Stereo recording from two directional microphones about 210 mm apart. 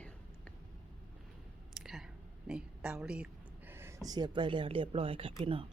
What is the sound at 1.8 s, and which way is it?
Speech, centre (ahead or behind).